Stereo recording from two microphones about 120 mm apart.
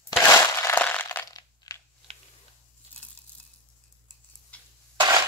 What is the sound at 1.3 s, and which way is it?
Crushing, 30° left (ahead or behind).